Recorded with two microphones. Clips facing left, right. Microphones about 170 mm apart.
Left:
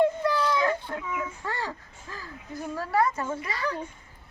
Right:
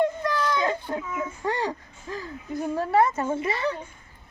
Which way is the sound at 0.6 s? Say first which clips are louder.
Right 1 dB; 20° right (ahead or behind).